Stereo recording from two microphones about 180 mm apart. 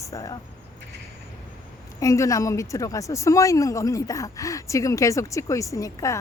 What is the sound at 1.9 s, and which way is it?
Speech, 15° left (ahead or behind).